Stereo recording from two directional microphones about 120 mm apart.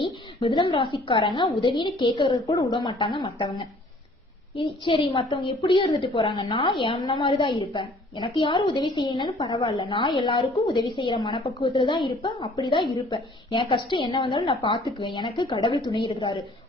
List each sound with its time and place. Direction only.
0.5 s a woman's voice: 40° left (ahead or behind)
10.4 s a woman's voice: 60° left (ahead or behind)
10.8 s a woman's voice: 40° left (ahead or behind)